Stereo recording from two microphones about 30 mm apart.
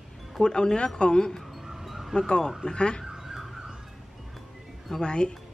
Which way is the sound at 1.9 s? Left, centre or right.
Centre.